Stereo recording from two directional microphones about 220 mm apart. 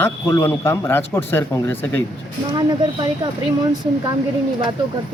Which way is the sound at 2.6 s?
20° right (ahead or behind).